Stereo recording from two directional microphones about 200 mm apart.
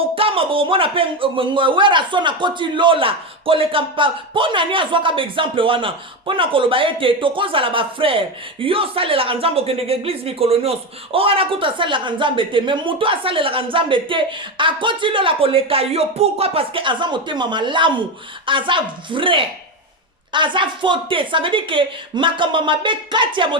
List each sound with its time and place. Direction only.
0.2 s speech: 25° right (ahead or behind)